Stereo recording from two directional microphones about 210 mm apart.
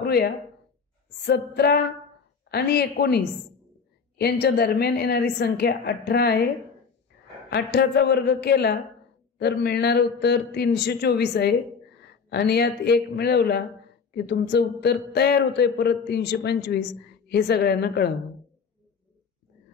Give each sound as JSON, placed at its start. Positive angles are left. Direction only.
{"t": 0.0, "sound": "a sound", "side_deg": 50}
{"t": 1.2, "sound": "a man's voice", "side_deg": 50}
{"t": 4.2, "sound": "a man's voice", "side_deg": 50}
{"t": 7.4, "sound": "a man's voice", "side_deg": 50}